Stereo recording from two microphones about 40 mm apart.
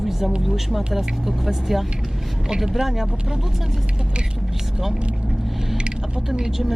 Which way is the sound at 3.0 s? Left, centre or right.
Right.